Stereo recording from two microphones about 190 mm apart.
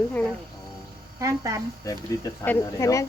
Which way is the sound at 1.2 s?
15° right (ahead or behind).